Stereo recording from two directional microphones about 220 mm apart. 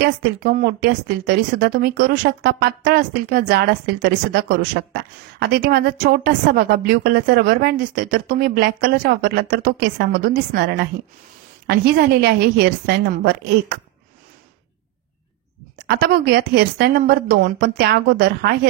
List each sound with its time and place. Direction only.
0.0 s speech: 45° right (ahead or behind)
15.9 s speech: 45° right (ahead or behind)